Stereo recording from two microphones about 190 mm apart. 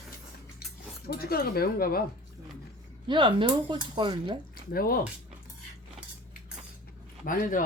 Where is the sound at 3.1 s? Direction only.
25° right (ahead or behind).